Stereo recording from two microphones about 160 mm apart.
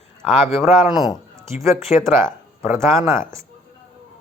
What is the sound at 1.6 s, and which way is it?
Speech, 20° right (ahead or behind).